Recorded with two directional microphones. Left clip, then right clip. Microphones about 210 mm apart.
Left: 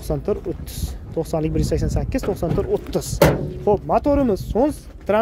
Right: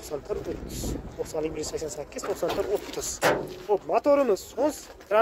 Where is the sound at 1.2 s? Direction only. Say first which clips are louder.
Left 6 dB; 30° left (ahead or behind).